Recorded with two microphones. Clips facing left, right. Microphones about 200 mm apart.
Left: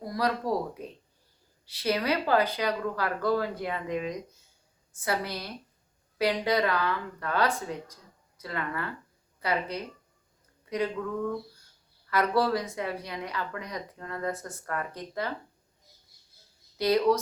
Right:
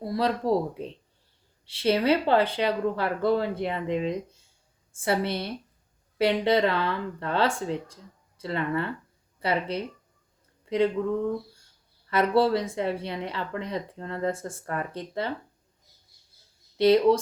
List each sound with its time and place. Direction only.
0.0 s speech: 25° right (ahead or behind)
16.7 s speech: 25° right (ahead or behind)